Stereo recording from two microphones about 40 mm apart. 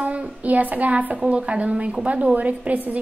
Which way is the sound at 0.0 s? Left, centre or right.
Right.